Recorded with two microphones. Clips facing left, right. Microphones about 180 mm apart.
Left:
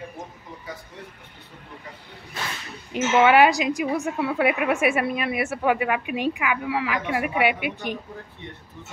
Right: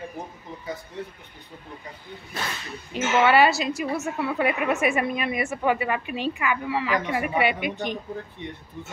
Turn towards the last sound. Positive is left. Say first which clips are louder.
# even
turn(degrees=10)  # may be behind; listen again after turning